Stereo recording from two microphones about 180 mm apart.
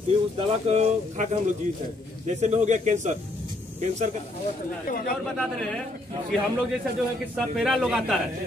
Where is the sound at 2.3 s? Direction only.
40° right (ahead or behind).